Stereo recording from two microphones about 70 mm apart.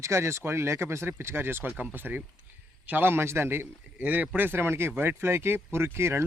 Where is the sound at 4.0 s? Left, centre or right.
Right.